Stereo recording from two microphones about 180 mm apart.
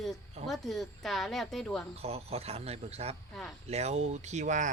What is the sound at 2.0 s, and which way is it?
Speech, 35° right (ahead or behind).